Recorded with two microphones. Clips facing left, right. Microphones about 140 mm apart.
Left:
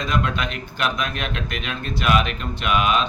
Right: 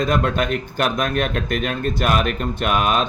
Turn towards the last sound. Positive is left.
turn(degrees=-45)  # may be behind; listen again after turning